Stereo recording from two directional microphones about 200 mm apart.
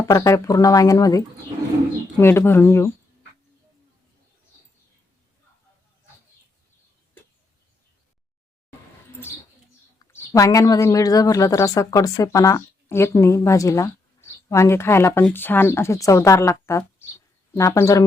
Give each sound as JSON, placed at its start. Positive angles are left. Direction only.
{"t": 0.1, "sound": "speech", "side_deg": 15}
{"t": 10.0, "sound": "speech", "side_deg": 15}